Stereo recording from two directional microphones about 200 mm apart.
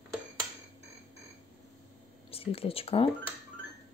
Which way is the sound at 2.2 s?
30° left (ahead or behind).